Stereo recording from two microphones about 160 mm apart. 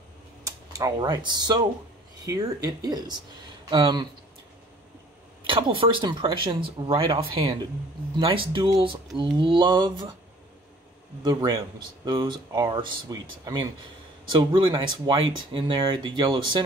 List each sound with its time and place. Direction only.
0.4 s speech: 20° right (ahead or behind)
5.5 s speech: 35° right (ahead or behind)
11.2 s speech: 25° right (ahead or behind)